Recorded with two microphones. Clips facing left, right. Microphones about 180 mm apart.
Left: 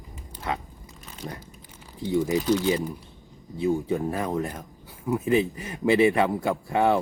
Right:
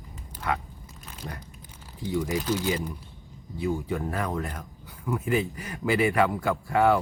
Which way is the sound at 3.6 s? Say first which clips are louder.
Left 4 dB; 20° left (ahead or behind).